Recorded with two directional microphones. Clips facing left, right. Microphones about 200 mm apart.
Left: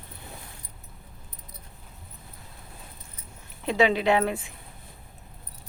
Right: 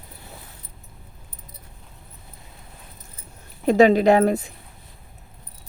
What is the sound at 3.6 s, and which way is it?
Speech, 45° right (ahead or behind).